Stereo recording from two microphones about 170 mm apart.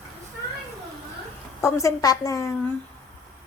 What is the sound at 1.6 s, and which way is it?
Speech, 15° left (ahead or behind).